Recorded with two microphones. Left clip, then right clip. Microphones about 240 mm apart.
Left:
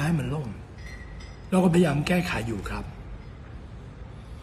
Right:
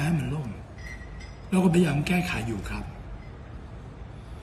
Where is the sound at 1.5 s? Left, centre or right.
Centre.